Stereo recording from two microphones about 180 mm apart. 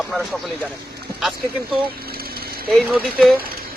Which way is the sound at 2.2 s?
55° right (ahead or behind).